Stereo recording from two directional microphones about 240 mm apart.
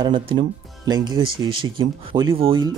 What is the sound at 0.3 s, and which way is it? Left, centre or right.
Speech, right.